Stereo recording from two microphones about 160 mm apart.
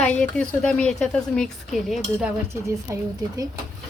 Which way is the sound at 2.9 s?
20° right (ahead or behind).